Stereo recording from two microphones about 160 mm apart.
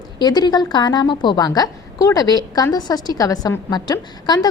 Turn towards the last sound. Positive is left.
turn(degrees=25)  # may be behind; listen again after turning